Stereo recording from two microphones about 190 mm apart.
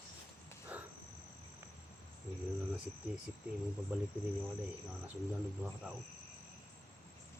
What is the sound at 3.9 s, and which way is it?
Speech, 10° right (ahead or behind).